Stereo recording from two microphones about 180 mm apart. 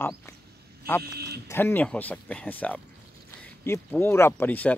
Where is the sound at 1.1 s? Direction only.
60° right (ahead or behind).